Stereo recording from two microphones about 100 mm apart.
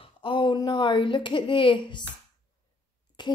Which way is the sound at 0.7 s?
50° left (ahead or behind).